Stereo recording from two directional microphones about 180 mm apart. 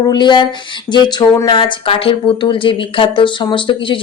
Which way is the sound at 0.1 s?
25° left (ahead or behind).